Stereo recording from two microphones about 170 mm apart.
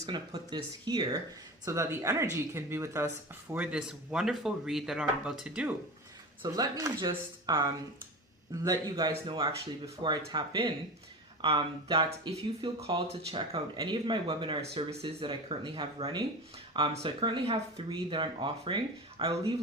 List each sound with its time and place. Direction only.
0.1 s speech: 25° right (ahead or behind); by 5.7 s 5° right (ahead or behind)
6.4 s speech: 20° right (ahead or behind)
8.6 s speech: 20° right (ahead or behind)